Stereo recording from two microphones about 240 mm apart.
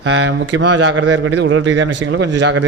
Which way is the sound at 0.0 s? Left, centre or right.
Right.